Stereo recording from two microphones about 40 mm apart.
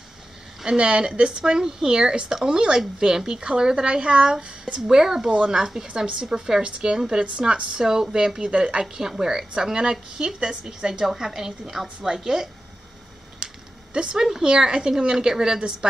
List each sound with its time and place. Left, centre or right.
0.7 s a woman's voice: right
4.8 s a woman's voice: centre
7.8 s a woman's voice: centre
8.8 s a woman's voice: centre
13.4 s a sound: right
13.9 s a woman's voice: centre